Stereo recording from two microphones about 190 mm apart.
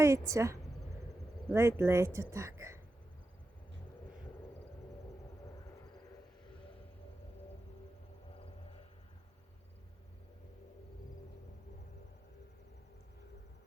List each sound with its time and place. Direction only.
0.0 s speech: 15° right (ahead or behind)